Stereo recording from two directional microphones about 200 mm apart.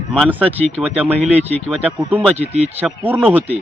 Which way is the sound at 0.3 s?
10° right (ahead or behind).